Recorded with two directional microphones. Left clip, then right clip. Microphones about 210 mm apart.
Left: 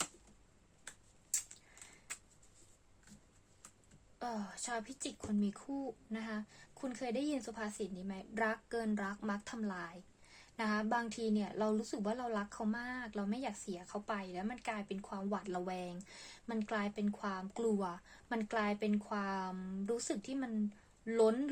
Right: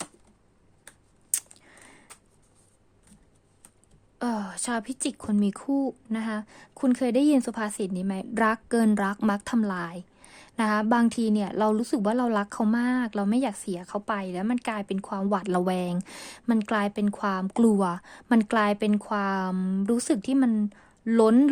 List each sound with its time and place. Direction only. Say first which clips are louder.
4.2 s speech: right 12 dB; 50° right (ahead or behind)